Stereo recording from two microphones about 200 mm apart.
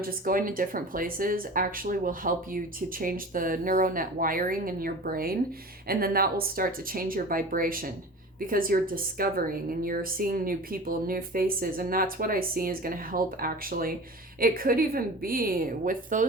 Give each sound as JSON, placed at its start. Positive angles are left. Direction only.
{"t": 0.0, "sound": "a woman's voice", "side_deg": -45}